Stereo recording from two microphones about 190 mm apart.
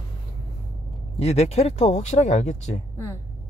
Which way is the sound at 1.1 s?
35° left (ahead or behind).